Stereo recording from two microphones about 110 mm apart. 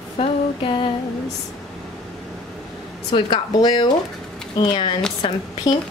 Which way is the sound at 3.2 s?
45° left (ahead or behind).